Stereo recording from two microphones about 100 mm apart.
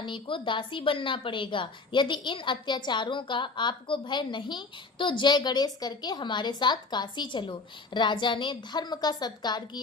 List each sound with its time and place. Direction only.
0.0 s a woman's voice: 55° left (ahead or behind)